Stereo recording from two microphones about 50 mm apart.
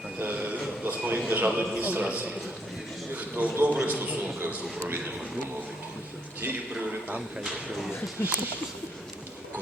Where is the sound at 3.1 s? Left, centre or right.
Right.